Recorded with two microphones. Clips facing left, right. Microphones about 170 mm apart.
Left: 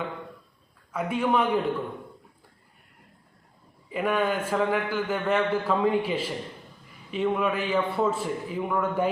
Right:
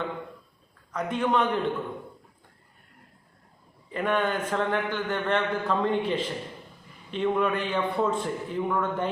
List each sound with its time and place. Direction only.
0.9 s a man's voice: 10° left (ahead or behind)
3.9 s a man's voice: 10° left (ahead or behind)